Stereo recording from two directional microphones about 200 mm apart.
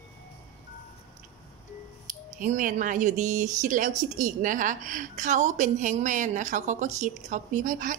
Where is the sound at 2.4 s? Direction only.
40° right (ahead or behind).